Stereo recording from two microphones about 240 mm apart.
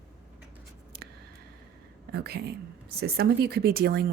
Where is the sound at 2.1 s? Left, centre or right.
Right.